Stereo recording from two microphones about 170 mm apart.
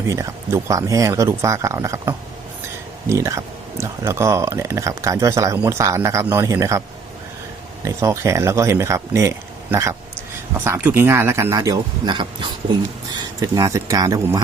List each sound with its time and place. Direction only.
0.1 s speech: 20° right (ahead or behind)
7.9 s speech: 15° right (ahead or behind)